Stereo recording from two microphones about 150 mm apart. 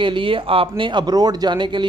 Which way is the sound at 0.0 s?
35° right (ahead or behind).